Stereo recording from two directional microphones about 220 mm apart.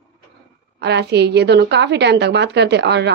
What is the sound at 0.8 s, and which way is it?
A woman's voice, 50° right (ahead or behind).